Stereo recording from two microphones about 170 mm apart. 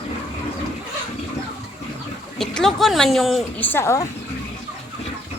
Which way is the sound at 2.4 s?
Centre (ahead or behind).